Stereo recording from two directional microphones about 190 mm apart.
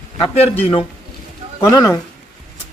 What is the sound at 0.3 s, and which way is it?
Speech, 35° left (ahead or behind).